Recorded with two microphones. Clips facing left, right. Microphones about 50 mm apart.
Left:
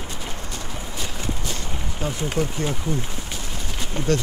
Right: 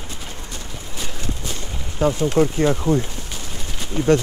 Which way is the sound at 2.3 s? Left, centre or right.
Right.